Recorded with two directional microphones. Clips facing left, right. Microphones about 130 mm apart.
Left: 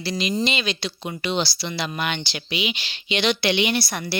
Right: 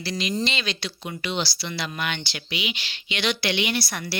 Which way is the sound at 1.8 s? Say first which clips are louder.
Left 3 dB; 20° left (ahead or behind).